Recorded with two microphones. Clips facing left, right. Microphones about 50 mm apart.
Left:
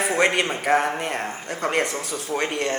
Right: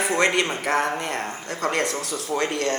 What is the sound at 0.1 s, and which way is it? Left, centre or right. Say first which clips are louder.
A man's voice: even; centre.